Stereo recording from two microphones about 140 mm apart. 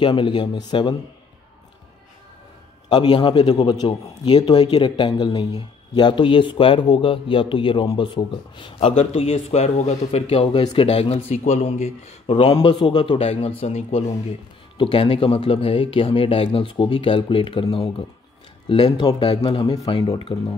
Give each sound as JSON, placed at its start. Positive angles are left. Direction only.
{"t": 0.0, "sound": "a man's voice", "side_deg": 35}
{"t": 2.9, "sound": "a man's voice", "side_deg": 35}
{"t": 10.6, "sound": "a man's voice", "side_deg": 30}
{"t": 10.9, "sound": "a man's voice", "side_deg": 45}